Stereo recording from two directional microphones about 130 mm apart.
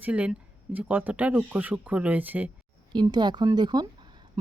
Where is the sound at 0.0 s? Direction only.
10° right (ahead or behind).